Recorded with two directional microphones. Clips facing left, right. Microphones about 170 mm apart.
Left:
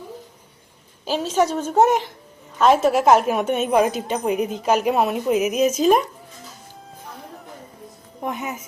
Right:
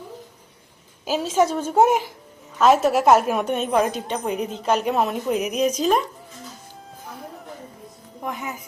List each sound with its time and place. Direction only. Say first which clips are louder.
1.0 s a woman's voice: even; 10° right (ahead or behind); by 6.1 s 10° left (ahead or behind)
8.2 s speech: left 3 dB; 20° left (ahead or behind)